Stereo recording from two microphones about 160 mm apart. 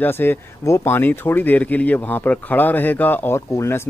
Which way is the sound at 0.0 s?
15° left (ahead or behind).